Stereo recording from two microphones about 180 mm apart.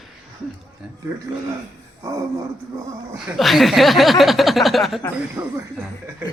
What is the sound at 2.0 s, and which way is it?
Speech, 20° right (ahead or behind).